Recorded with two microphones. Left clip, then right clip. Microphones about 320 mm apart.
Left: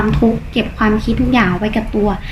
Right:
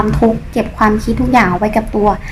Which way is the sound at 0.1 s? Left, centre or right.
Centre.